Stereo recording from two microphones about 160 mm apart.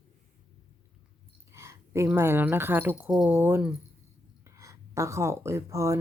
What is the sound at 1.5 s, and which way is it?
Speech, 15° right (ahead or behind).